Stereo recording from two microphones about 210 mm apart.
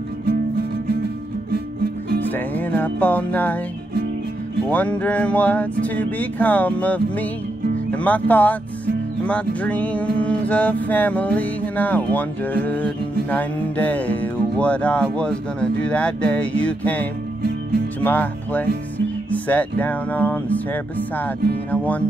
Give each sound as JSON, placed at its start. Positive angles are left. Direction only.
{"t": 2.3, "sound": "music", "side_deg": 10}
{"t": 4.6, "sound": "music", "side_deg": 5}
{"t": 7.9, "sound": "speech", "side_deg": 5}
{"t": 9.2, "sound": "music", "side_deg": 5}